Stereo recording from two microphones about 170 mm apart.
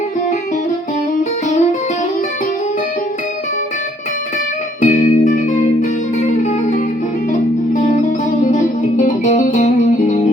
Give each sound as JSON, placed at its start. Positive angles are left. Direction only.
{"t": 4.8, "sound": "music", "side_deg": 45}
{"t": 9.0, "sound": "music", "side_deg": 50}